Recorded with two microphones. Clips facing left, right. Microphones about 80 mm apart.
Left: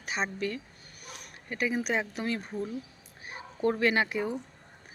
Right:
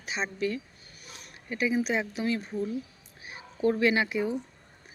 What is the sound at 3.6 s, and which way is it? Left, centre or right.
Speech, left.